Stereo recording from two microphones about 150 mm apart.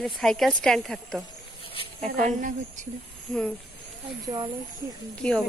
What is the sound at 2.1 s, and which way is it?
Speech, 60° right (ahead or behind).